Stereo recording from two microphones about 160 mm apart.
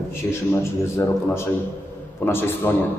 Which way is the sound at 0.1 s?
15° left (ahead or behind).